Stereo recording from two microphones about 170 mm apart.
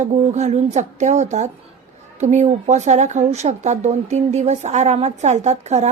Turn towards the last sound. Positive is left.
turn(degrees=-40)  # may be behind; listen again after turning